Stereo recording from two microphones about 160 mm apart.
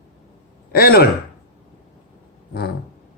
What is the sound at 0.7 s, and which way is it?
Speech, 70° left (ahead or behind).